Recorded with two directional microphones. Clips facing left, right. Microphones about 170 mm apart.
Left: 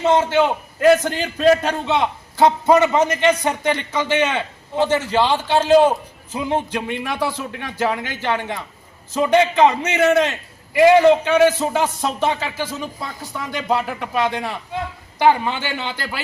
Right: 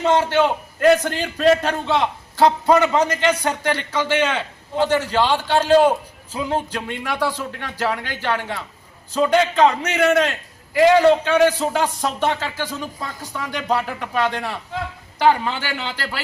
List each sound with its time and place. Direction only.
0.2 s a man's voice: 15° left (ahead or behind)
0.4 s a man's voice: 5° left (ahead or behind)
11.8 s a man's voice: 5° left (ahead or behind)